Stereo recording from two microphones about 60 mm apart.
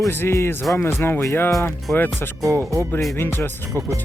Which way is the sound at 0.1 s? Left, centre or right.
Left.